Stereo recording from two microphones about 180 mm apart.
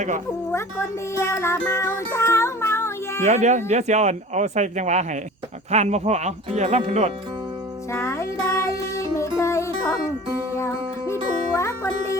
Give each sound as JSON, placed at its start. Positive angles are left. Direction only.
{"t": 0.5, "sound": "speech", "side_deg": 15}
{"t": 3.2, "sound": "speech", "side_deg": -40}
{"t": 7.9, "sound": "music", "side_deg": 15}